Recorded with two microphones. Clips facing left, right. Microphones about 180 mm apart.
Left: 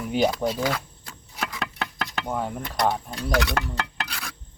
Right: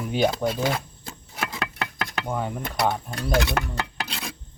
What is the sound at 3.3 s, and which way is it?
Speech, 25° right (ahead or behind).